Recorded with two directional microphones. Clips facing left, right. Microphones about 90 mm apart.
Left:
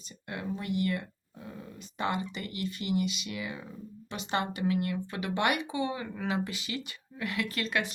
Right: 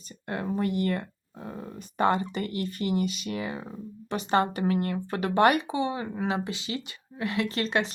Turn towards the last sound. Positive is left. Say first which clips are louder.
# right 5 dB
turn(degrees=-30)  # may be behind; listen again after turning